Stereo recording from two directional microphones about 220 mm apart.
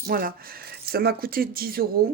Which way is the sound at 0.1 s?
40° right (ahead or behind).